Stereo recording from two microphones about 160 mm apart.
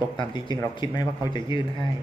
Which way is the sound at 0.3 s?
30° left (ahead or behind).